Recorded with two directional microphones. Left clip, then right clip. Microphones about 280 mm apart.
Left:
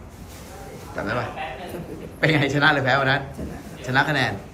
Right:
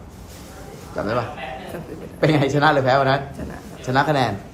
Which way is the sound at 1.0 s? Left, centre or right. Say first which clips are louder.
Right 3 dB; centre.